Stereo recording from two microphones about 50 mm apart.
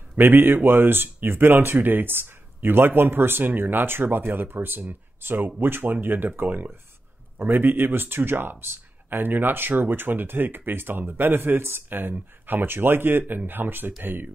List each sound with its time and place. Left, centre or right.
0.1 s speech: right